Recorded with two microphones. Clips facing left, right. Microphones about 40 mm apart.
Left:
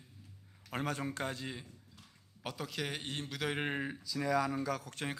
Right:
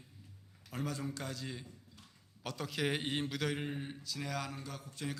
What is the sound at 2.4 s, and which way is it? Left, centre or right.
Speech, centre.